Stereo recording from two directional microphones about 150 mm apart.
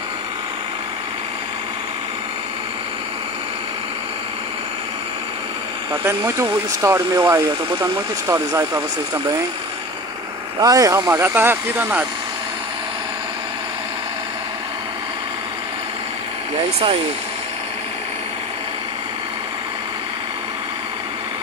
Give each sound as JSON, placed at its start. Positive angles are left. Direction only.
{"t": 6.0, "sound": "speech", "side_deg": -20}
{"t": 10.6, "sound": "speech", "side_deg": -25}